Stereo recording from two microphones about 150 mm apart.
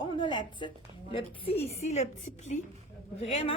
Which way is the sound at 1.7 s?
45° left (ahead or behind).